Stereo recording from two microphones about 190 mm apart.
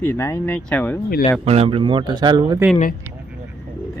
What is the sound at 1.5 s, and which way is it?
Speech, 30° right (ahead or behind).